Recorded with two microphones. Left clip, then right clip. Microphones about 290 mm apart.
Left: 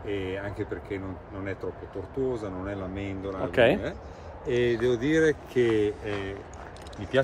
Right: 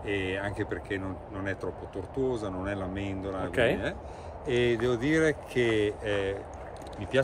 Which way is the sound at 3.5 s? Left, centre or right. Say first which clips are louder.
Left 5 dB; left.